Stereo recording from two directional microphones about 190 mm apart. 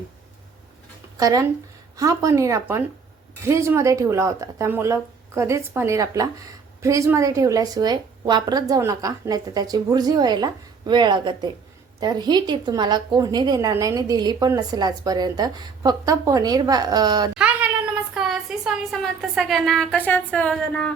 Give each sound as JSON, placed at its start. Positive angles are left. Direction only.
{"t": 1.1, "sound": "speech", "side_deg": -20}
{"t": 17.3, "sound": "a woman's voice", "side_deg": -5}